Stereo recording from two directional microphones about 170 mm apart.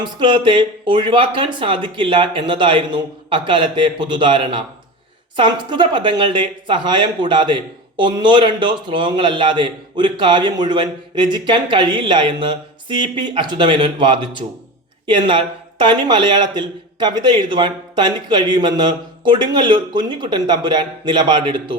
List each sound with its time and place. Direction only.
0.0 s speech: 30° right (ahead or behind)